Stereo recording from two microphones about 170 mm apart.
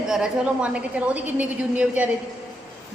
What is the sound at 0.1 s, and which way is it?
A woman's voice, 5° right (ahead or behind).